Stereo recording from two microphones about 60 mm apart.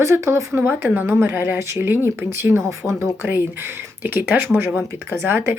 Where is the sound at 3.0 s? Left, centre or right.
Right.